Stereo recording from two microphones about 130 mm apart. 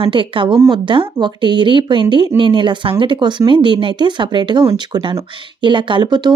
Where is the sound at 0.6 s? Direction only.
25° right (ahead or behind).